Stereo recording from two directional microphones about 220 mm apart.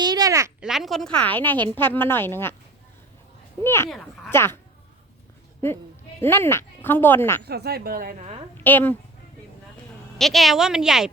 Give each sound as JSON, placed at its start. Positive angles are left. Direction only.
{"t": 0.0, "sound": "a sound", "side_deg": -15}
{"t": 0.6, "sound": "speech", "side_deg": 0}
{"t": 3.6, "sound": "speech", "side_deg": 10}
{"t": 6.1, "sound": "speech", "side_deg": 10}
{"t": 7.4, "sound": "speech", "side_deg": -45}
{"t": 8.2, "sound": "a woman's voice", "side_deg": -25}
{"t": 8.5, "sound": "speech", "side_deg": 10}
{"t": 10.2, "sound": "speech", "side_deg": 0}